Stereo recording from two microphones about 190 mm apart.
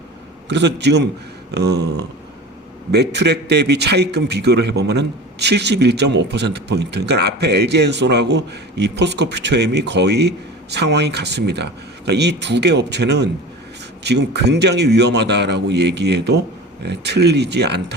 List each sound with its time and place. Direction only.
0.4 s a man's voice: 65° right (ahead or behind)